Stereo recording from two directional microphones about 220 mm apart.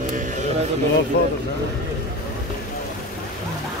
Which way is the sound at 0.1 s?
35° right (ahead or behind).